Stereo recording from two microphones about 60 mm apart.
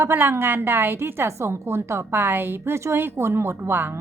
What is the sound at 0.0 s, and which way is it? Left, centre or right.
A woman's voice, right.